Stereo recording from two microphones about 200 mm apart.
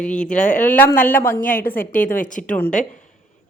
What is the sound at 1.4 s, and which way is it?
A woman's voice, 45° left (ahead or behind).